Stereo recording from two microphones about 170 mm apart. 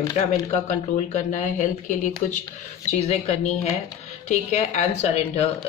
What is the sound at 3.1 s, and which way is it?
Speech, 40° left (ahead or behind).